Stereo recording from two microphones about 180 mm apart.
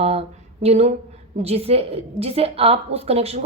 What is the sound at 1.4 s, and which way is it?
A woman's voice, 35° right (ahead or behind).